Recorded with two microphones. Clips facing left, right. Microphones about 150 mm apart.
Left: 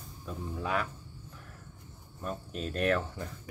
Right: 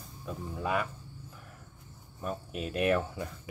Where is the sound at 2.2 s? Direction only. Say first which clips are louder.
Right 1 dB; 10° right (ahead or behind).